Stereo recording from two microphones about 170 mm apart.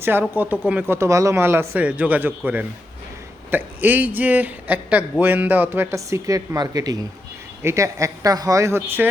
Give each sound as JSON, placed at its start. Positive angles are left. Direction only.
{"t": 0.0, "sound": "speech", "side_deg": -10}